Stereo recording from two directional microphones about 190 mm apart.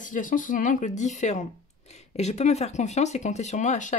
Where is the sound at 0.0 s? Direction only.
45° left (ahead or behind).